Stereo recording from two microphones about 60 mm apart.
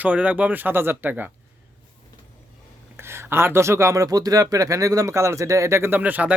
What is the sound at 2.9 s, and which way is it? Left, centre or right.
Speech, right.